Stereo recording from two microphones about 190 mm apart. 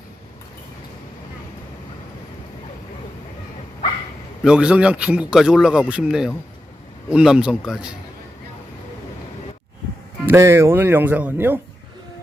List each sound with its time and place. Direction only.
4.4 s a man's voice: 5° right (ahead or behind)
10.2 s speech: 15° right (ahead or behind)